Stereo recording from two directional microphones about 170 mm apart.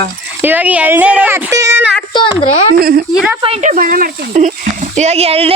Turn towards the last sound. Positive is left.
turn(degrees=-35)  # may be behind; listen again after turning